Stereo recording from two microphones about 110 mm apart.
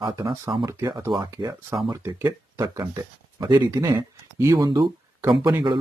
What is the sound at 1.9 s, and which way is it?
Speech, 30° right (ahead or behind).